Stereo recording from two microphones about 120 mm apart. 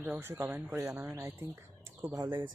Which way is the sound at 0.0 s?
20° right (ahead or behind).